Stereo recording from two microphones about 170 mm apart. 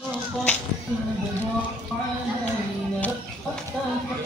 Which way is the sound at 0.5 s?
5° left (ahead or behind).